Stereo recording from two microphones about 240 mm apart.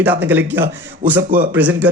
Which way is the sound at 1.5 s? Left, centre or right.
Centre.